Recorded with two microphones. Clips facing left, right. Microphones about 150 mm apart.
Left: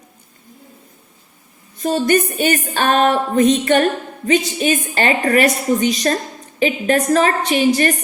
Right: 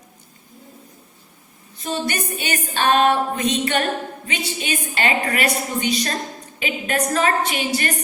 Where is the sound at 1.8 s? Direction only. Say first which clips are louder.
Left 9 dB; 45° left (ahead or behind).